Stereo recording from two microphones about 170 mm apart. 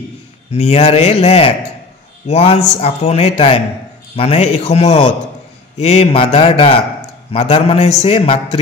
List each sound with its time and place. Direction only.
0.5 s a man's voice: 40° left (ahead or behind)